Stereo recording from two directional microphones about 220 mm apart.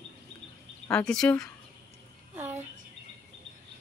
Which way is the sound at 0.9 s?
5° left (ahead or behind).